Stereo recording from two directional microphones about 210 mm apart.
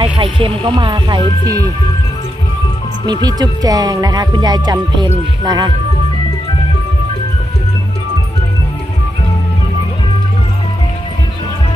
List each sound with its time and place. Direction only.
0.2 s speech: 25° right (ahead or behind)
3.1 s speech: 20° right (ahead or behind)